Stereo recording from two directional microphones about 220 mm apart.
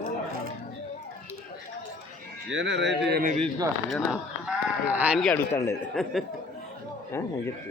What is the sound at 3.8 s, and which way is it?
Speech, centre (ahead or behind).